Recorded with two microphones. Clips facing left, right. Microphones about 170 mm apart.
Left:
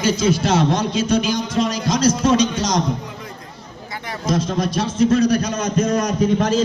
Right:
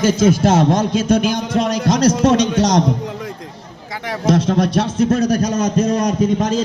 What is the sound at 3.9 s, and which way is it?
A man's voice, 90° right.